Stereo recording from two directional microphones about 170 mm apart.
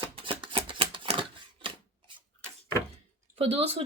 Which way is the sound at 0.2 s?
30° right (ahead or behind).